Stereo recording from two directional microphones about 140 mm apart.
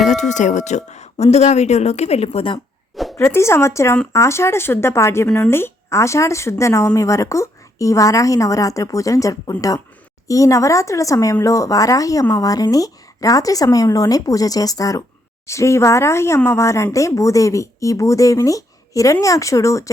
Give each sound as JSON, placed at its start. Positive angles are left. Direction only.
{"t": 0.0, "sound": "speech", "side_deg": 60}
{"t": 2.9, "sound": "a sound", "side_deg": 0}
{"t": 3.2, "sound": "speech", "side_deg": 20}